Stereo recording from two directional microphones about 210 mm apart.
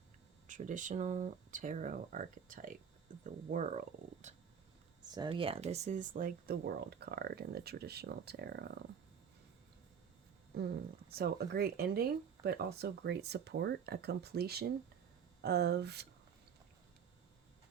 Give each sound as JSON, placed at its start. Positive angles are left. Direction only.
{"t": 0.4, "sound": "speech", "side_deg": -35}
{"t": 5.1, "sound": "speech", "side_deg": -20}
{"t": 10.5, "sound": "speech", "side_deg": -50}